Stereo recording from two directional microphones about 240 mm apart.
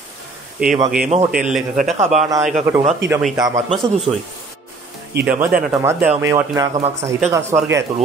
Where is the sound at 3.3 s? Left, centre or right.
Centre.